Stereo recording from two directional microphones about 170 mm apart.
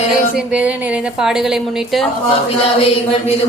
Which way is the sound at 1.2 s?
5° right (ahead or behind).